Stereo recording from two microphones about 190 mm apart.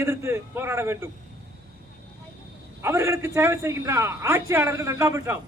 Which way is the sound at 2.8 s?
15° right (ahead or behind).